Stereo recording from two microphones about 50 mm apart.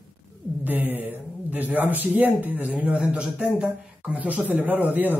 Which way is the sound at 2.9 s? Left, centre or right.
Centre.